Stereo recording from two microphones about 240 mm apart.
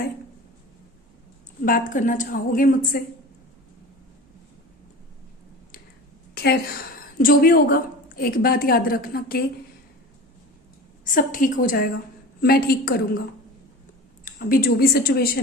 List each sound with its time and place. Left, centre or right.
1.6 s a woman's voice: left
6.3 s a sound: left
7.2 s a woman's voice: left
11.0 s a woman's voice: left
14.3 s a woman's voice: left